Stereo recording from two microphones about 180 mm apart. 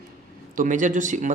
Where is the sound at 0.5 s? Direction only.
45° right (ahead or behind).